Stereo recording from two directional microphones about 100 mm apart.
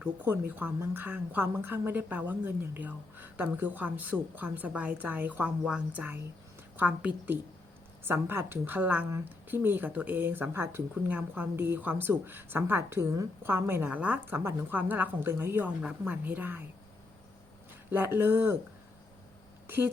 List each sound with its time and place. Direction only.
0.0 s speech: 15° right (ahead or behind)
17.9 s speech: 20° right (ahead or behind)
19.6 s speech: 20° right (ahead or behind)